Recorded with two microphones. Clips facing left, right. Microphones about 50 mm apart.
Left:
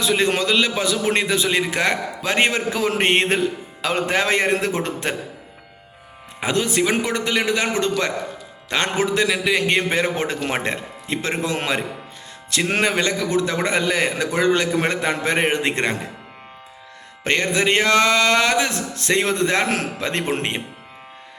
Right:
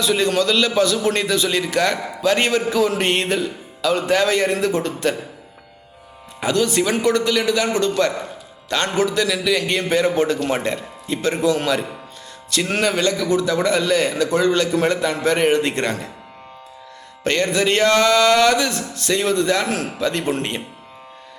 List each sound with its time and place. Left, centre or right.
0.0 s a man's voice: left
6.4 s a man's voice: left
13.1 s a man's voice: left
17.2 s a man's voice: left